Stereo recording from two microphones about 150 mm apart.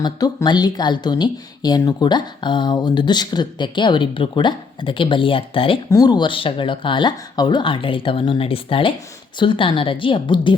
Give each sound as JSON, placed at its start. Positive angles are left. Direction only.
{"t": 0.0, "sound": "speech", "side_deg": 30}